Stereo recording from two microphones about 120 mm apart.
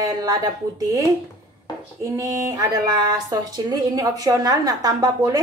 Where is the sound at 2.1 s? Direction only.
30° right (ahead or behind).